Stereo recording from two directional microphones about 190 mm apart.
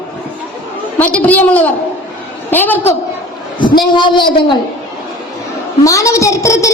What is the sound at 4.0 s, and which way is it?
Speech, 25° left (ahead or behind).